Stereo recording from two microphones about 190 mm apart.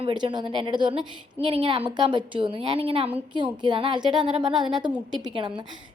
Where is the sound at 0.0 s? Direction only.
25° right (ahead or behind).